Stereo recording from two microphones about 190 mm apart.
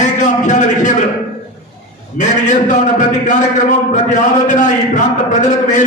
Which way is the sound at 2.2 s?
40° left (ahead or behind).